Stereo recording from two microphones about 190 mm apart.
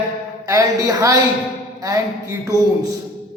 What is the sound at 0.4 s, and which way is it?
Speech, 20° right (ahead or behind).